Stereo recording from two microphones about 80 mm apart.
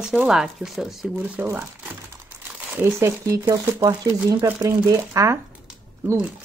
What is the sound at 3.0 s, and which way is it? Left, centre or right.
Speech, right.